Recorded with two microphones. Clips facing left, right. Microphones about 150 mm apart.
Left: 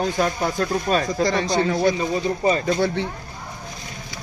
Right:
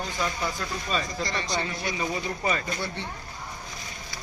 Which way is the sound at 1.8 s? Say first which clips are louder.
Left 9 dB; 30° left (ahead or behind).